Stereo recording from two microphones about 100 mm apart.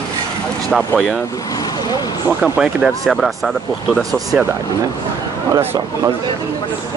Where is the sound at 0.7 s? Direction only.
Centre (ahead or behind).